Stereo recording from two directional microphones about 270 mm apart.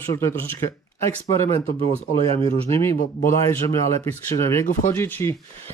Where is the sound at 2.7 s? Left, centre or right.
Centre.